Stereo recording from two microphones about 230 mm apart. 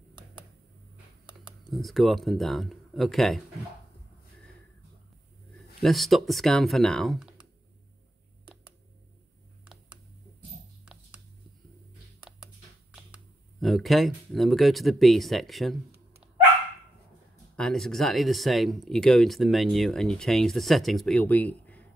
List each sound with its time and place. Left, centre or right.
1.6 s speech: centre
5.8 s speech: centre
13.6 s speech: centre
17.6 s speech: centre